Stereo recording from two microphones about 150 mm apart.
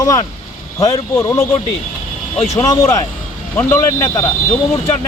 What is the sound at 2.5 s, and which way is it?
Speech, 20° left (ahead or behind).